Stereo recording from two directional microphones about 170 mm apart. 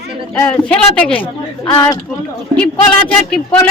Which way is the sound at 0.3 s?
10° left (ahead or behind).